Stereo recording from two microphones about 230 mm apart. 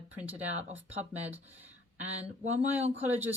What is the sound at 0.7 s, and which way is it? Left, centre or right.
Speech, centre.